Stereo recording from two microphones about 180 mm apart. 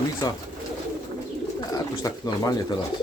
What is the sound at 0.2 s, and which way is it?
Speech, 20° left (ahead or behind).